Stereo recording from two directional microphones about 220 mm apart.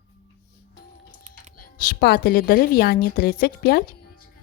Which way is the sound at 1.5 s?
40° left (ahead or behind).